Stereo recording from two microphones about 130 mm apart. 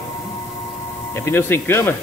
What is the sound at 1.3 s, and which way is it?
Speech, 20° left (ahead or behind).